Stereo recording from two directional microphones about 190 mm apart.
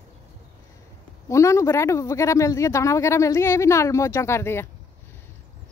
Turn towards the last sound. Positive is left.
turn(degrees=15)  # may be behind; listen again after turning